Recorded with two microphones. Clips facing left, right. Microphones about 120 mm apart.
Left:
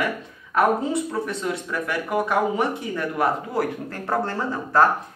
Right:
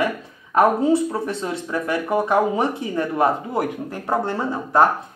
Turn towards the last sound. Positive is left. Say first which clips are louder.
# right 2 dB
turn(degrees=-20)  # may be behind; listen again after turning